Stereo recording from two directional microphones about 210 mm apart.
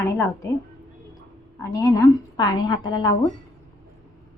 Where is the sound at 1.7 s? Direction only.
15° left (ahead or behind).